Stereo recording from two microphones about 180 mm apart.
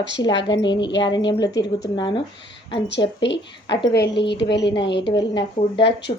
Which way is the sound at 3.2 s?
75° left (ahead or behind).